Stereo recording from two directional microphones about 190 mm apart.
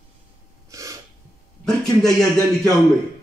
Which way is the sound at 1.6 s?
5° left (ahead or behind).